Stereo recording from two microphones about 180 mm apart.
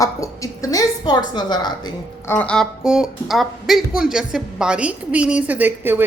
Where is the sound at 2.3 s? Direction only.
5° left (ahead or behind).